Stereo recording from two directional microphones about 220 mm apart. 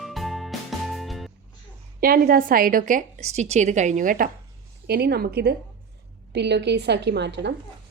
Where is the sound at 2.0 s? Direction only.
45° right (ahead or behind).